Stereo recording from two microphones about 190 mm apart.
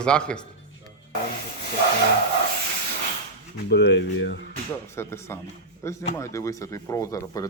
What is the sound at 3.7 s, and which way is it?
Speech, 65° left (ahead or behind).